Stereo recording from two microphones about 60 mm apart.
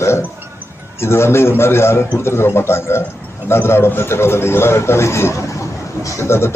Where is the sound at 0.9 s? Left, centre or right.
Left.